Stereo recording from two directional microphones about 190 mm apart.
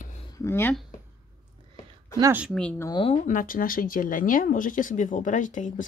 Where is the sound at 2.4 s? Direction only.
5° left (ahead or behind).